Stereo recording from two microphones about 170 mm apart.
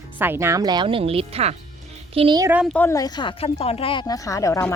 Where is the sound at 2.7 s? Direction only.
15° left (ahead or behind).